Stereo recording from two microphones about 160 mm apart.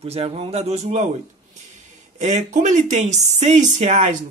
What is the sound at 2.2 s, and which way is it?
Speech, 50° right (ahead or behind).